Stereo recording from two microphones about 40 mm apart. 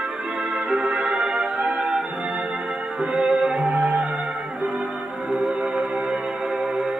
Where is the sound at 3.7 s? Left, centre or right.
Right.